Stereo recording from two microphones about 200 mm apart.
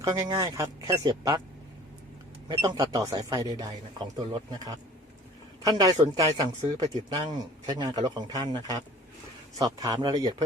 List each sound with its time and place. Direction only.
0.0 s speech: 15° right (ahead or behind)
2.5 s a man's voice: 20° right (ahead or behind)